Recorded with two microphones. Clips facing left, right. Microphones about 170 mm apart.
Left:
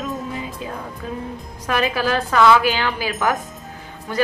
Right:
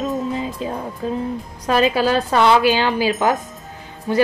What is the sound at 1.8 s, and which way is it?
Speech, 20° right (ahead or behind).